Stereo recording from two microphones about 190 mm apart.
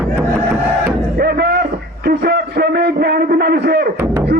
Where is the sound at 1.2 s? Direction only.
55° right (ahead or behind).